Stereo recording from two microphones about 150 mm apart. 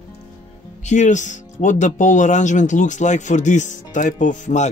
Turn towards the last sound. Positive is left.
turn(degrees=55)  # may be behind; listen again after turning